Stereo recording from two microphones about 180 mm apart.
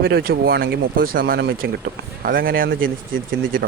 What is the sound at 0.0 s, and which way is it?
Speech, 60° right (ahead or behind).